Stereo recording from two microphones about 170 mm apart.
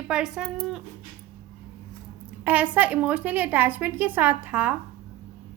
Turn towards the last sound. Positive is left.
turn(degrees=-10)  # may be behind; listen again after turning